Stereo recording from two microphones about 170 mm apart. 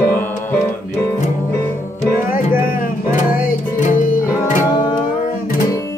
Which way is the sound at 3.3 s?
55° left (ahead or behind).